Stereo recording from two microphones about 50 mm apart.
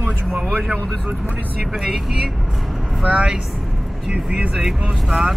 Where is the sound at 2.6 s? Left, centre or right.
Centre.